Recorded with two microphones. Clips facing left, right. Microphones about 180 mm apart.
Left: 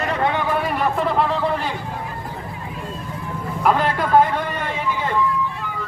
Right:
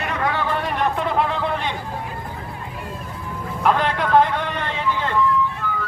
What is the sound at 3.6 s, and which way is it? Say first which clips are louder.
Vehicle: left 1 dB; 5° left (ahead or behind).